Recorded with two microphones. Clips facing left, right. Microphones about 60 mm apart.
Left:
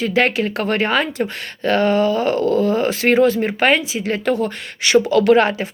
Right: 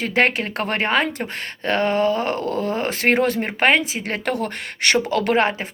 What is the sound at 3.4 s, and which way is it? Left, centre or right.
Speech, right.